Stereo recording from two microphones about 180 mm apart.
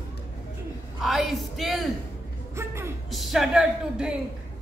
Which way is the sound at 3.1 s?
Centre (ahead or behind).